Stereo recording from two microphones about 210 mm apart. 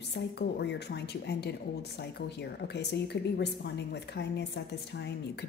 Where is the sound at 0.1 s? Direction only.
55° left (ahead or behind).